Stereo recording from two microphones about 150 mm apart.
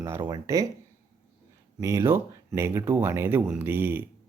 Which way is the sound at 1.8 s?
20° right (ahead or behind).